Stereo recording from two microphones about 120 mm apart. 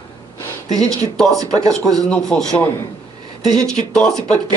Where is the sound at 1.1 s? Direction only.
5° left (ahead or behind).